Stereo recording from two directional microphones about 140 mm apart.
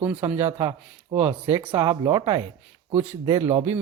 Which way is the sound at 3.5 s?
50° right (ahead or behind).